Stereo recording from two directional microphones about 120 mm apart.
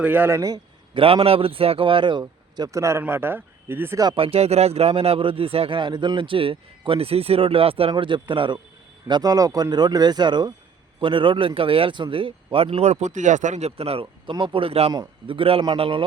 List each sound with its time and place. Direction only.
0.0 s a man's voice: 15° right (ahead or behind)
0.9 s speech: 50° right (ahead or behind)
2.2 s speech: 25° right (ahead or behind)
4.1 s speech: 50° right (ahead or behind)
14.9 s speech: 40° right (ahead or behind)